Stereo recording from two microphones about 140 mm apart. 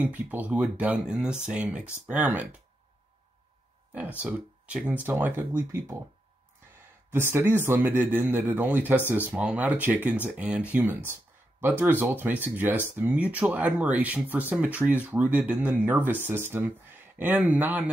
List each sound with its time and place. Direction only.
0.0 s speech: 10° right (ahead or behind)
3.9 s speech: 10° right (ahead or behind)